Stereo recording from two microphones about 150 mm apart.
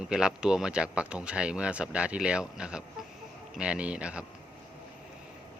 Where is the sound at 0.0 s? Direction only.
5° right (ahead or behind).